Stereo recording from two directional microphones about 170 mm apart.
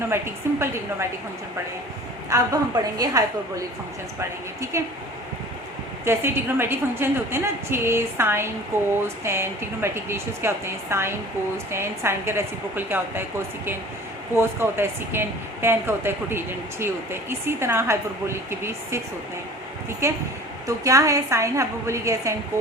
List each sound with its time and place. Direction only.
0.1 s a woman's voice: 15° right (ahead or behind)
2.3 s a woman's voice: 20° right (ahead or behind)
6.1 s a woman's voice: 15° right (ahead or behind)
20.0 s a woman's voice: 15° right (ahead or behind)